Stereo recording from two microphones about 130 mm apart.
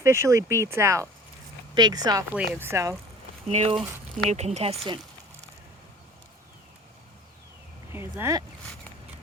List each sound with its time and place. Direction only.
0.0 s speech: 20° right (ahead or behind)
1.7 s speech: 30° right (ahead or behind)
2.3 s speech: 10° right (ahead or behind)
2.6 s speech: 20° right (ahead or behind)
3.4 s speech: 55° right (ahead or behind)
7.9 s speech: 20° right (ahead or behind)